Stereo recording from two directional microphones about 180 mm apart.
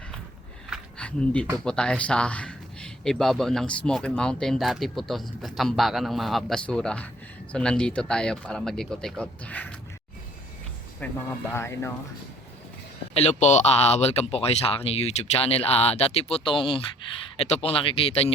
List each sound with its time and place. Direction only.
0.7 s a sound: 5° left (ahead or behind)
1.6 s speech: 5° left (ahead or behind)
11.0 s speech: 10° left (ahead or behind)
13.1 s speech: 40° left (ahead or behind)